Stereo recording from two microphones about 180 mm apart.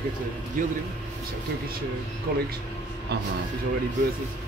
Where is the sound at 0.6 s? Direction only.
45° right (ahead or behind).